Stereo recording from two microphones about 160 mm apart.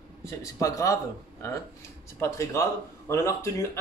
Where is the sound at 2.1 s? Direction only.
15° left (ahead or behind).